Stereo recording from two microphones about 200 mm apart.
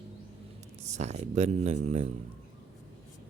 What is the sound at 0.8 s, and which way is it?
Speech, 35° right (ahead or behind).